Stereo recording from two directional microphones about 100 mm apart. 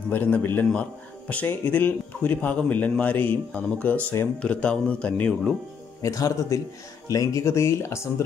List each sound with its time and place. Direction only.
0.1 s speech: 20° left (ahead or behind)
6.0 s speech: 35° left (ahead or behind)